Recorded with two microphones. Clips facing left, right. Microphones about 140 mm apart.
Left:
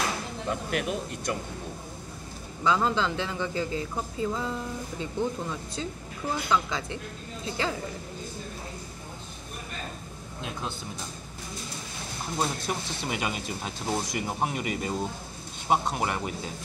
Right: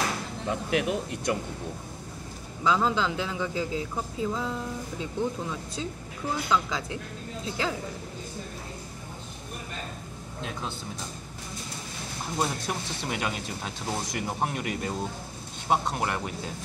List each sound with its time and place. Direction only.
0.5 s speech: 20° right (ahead or behind)
2.6 s a man's voice: centre (ahead or behind)
12.4 s a man's voice: 5° left (ahead or behind)